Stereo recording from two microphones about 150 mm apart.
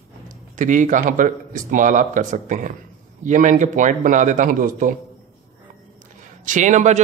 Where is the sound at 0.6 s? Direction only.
55° right (ahead or behind).